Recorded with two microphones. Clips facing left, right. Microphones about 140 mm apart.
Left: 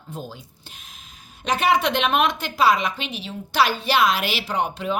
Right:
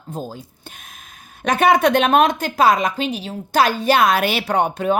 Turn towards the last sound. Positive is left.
turn(degrees=-50)  # may be behind; listen again after turning